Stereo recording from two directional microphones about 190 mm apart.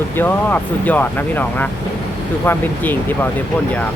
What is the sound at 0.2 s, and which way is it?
Speech, 10° left (ahead or behind).